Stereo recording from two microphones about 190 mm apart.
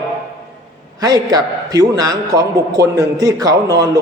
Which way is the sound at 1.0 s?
20° right (ahead or behind).